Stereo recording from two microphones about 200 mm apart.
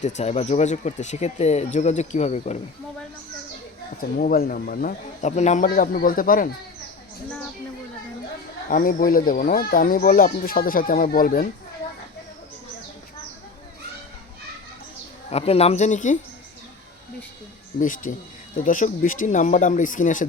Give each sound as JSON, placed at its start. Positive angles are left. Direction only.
{"t": 0.0, "sound": "speech", "side_deg": 35}
{"t": 4.2, "sound": "speech", "side_deg": 45}
{"t": 8.7, "sound": "speech", "side_deg": 45}
{"t": 15.3, "sound": "speech", "side_deg": 30}
{"t": 17.7, "sound": "speech", "side_deg": 40}